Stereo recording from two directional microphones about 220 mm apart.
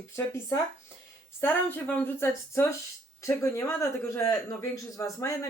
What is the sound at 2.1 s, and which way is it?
A woman's voice, 10° left (ahead or behind).